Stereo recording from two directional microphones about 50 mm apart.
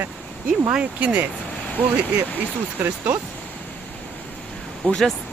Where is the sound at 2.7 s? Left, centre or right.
Right.